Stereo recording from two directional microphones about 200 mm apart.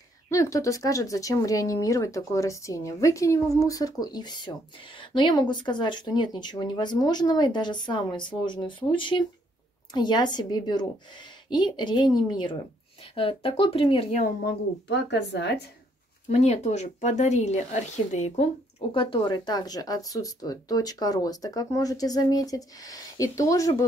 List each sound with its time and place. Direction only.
0.3 s speech: 15° left (ahead or behind)
14.2 s a woman's voice: 55° left (ahead or behind)
16.3 s speech: 35° left (ahead or behind); by 23.9 s 15° left (ahead or behind)